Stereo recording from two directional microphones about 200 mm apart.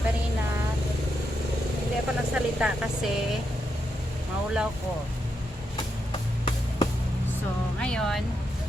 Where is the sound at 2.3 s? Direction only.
5° right (ahead or behind).